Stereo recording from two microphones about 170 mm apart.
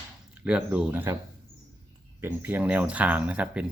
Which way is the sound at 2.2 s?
10° right (ahead or behind).